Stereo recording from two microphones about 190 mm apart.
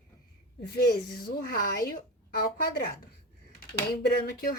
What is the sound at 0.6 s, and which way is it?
Speech, 55° left (ahead or behind).